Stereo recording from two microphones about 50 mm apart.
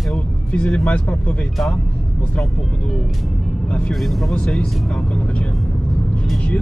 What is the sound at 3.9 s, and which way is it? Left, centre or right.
Speech, centre.